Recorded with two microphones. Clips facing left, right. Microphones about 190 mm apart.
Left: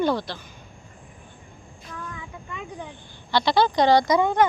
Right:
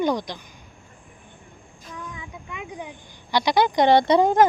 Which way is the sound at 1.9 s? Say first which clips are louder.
Even; 15° right (ahead or behind).